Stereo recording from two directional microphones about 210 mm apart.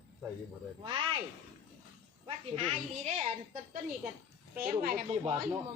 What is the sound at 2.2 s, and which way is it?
Speech, 30° right (ahead or behind).